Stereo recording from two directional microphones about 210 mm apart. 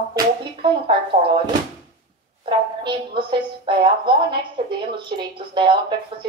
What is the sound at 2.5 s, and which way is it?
A woman's voice, 25° right (ahead or behind).